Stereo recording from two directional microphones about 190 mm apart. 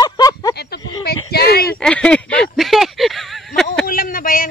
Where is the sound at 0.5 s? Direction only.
60° left (ahead or behind).